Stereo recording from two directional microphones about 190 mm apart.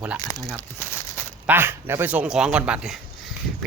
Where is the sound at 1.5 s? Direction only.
10° right (ahead or behind).